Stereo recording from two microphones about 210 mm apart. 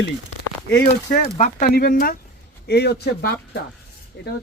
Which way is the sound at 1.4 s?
35° left (ahead or behind).